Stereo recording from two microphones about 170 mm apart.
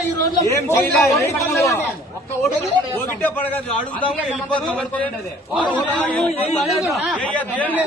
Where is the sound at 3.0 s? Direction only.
10° left (ahead or behind).